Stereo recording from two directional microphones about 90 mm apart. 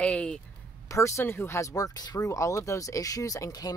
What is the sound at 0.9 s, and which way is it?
Speech, 35° left (ahead or behind).